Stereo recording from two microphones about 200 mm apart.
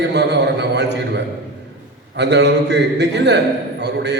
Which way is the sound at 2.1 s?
60° right (ahead or behind).